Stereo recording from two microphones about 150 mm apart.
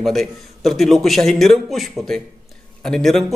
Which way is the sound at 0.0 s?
Centre (ahead or behind).